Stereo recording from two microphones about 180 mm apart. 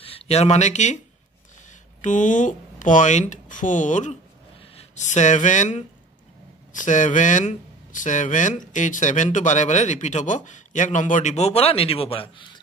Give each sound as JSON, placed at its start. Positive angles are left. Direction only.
{"t": 0.0, "sound": "speech", "side_deg": 35}